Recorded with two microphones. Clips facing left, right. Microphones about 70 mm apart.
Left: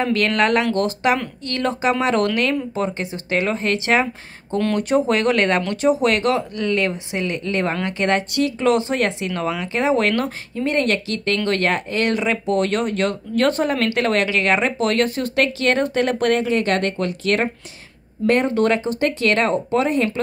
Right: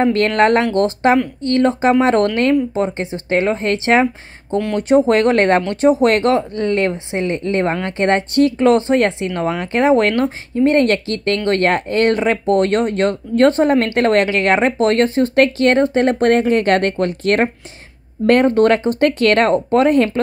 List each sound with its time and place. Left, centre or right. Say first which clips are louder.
0.0 s speech: right 5 dB; right
9.7 s speech: right 6 dB; right
10.1 s speech: right 5 dB; right
15.8 s speech: right 5 dB; right
18.2 s speech: right 5 dB; right